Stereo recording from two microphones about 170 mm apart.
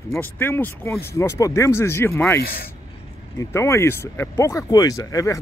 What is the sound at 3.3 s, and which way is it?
Speech, 15° left (ahead or behind).